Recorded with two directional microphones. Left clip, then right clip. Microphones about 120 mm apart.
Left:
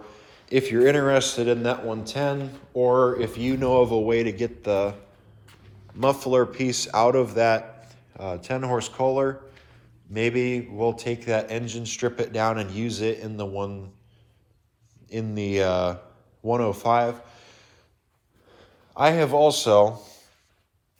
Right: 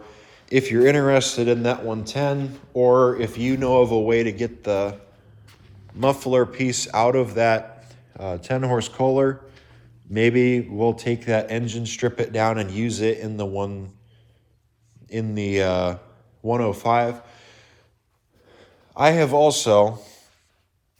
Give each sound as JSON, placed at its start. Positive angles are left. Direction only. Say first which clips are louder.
{"t": 0.0, "sound": "a sound", "louder": "right 1 dB", "side_deg": 35}
{"t": 0.9, "sound": "speech", "louder": "right 2 dB", "side_deg": 25}
{"t": 6.0, "sound": "speech", "louder": "right 1 dB", "side_deg": 50}
{"t": 15.0, "sound": "speech", "louder": "right 3 dB", "side_deg": 50}
{"t": 16.4, "sound": "a sound", "louder": "right 1 dB", "side_deg": 50}
{"t": 18.4, "sound": "a man's voice", "louder": "right 2 dB", "side_deg": 40}